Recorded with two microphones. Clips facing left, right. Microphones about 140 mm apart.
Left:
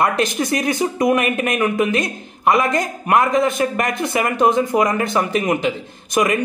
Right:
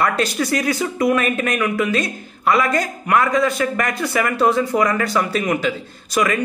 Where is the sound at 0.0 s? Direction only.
20° left (ahead or behind).